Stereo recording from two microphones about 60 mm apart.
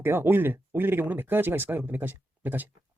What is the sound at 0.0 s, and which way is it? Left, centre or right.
Speech, right.